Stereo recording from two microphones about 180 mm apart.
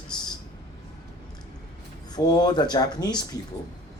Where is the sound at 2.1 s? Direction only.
20° left (ahead or behind).